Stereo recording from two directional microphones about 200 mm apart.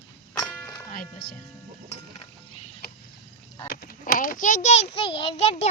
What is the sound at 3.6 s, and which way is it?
A child's voice, 45° left (ahead or behind).